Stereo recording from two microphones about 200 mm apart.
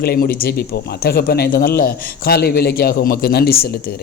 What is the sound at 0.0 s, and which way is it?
A man's voice, 50° left (ahead or behind).